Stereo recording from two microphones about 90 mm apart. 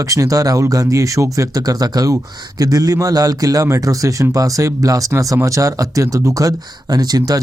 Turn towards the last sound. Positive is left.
turn(degrees=-45)  # may be behind; listen again after turning